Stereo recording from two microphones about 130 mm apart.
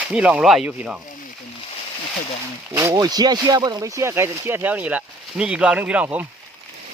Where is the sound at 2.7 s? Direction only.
25° right (ahead or behind).